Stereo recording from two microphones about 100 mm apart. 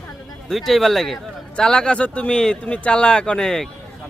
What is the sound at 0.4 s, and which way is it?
A man's voice, 5° left (ahead or behind).